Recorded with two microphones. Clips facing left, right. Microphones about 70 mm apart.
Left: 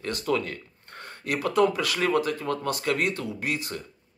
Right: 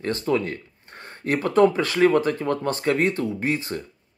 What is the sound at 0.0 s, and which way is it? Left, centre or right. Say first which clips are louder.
Speech: right 4 dB; right.